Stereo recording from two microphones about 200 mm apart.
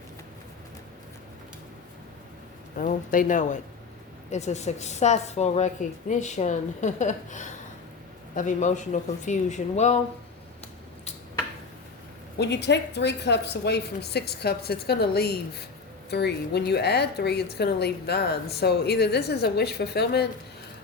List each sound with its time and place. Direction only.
2.7 s a woman's voice: 45° left (ahead or behind)
12.4 s a woman's voice: 60° left (ahead or behind)